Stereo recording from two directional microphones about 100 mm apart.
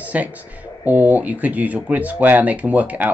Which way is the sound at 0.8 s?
15° right (ahead or behind).